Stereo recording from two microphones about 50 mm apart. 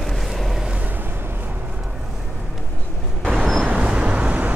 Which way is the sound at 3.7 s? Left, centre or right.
Right.